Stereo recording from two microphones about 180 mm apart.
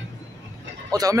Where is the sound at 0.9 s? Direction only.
20° right (ahead or behind).